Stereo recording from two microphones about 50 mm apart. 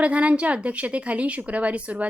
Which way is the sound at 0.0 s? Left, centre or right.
Right.